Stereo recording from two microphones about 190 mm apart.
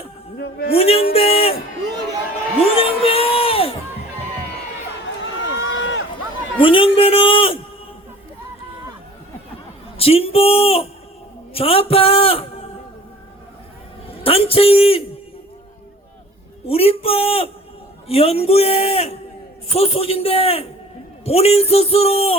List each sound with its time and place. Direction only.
0.3 s a man's voice: 60° left (ahead or behind)
0.8 s music: 30° left (ahead or behind)
2.6 s music: 30° left (ahead or behind)
5.5 s run: 90° left
6.6 s a sound: 25° left (ahead or behind)
10.0 s a man's voice: 30° left (ahead or behind)
14.3 s a man's voice: 30° left (ahead or behind)
16.6 s a man's voice: 30° left (ahead or behind)